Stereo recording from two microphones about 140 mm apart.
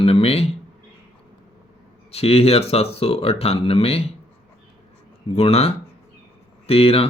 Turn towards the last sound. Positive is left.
turn(degrees=45)  # may be behind; listen again after turning